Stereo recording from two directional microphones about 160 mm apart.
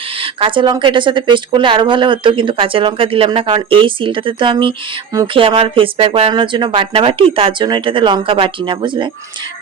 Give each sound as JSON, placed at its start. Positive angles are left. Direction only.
{"t": 0.2, "sound": "speech", "side_deg": -35}